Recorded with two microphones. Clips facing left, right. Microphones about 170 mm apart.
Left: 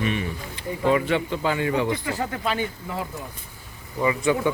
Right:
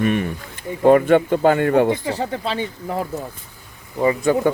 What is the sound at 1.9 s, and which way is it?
Speech, 30° right (ahead or behind).